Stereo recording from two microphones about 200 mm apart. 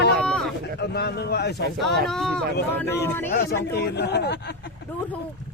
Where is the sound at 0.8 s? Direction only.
55° left (ahead or behind).